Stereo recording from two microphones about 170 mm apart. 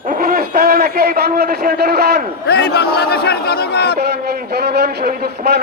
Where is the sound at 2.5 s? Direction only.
70° left (ahead or behind).